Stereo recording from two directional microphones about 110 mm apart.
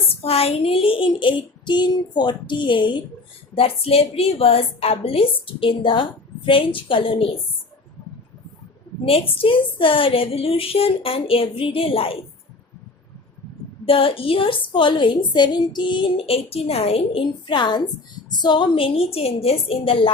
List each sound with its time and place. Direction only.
0.2 s speech: 65° left (ahead or behind); by 3.0 s 45° left (ahead or behind)
3.5 s a woman's voice: 60° left (ahead or behind)
9.0 s a woman's voice: 60° left (ahead or behind)
13.8 s a woman's voice: 55° left (ahead or behind)